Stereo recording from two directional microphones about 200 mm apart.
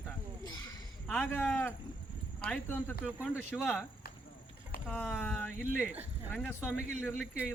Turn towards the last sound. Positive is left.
turn(degrees=10)  # may be behind; listen again after turning